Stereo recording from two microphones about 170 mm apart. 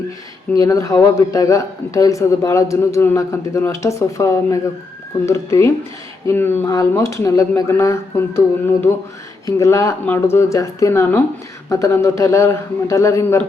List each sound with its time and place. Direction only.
0.5 s a man's voice: 20° left (ahead or behind)